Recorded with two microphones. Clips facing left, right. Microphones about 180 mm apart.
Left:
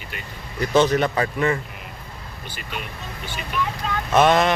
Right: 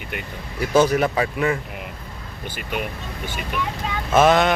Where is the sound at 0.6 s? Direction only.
10° right (ahead or behind).